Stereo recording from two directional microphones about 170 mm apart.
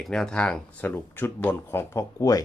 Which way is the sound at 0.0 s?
Centre (ahead or behind).